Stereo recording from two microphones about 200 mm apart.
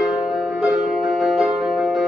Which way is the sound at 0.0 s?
Centre (ahead or behind).